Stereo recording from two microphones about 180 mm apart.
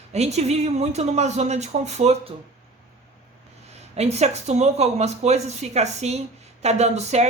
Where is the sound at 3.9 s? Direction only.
35° right (ahead or behind).